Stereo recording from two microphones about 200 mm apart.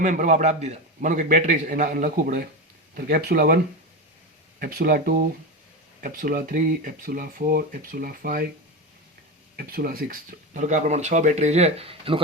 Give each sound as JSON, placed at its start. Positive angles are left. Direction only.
{"t": 0.0, "sound": "speech", "side_deg": -40}
{"t": 4.6, "sound": "speech", "side_deg": -50}
{"t": 9.6, "sound": "speech", "side_deg": -50}